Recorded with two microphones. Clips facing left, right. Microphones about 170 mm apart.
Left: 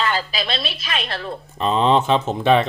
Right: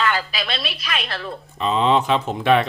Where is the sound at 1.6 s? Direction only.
40° left (ahead or behind).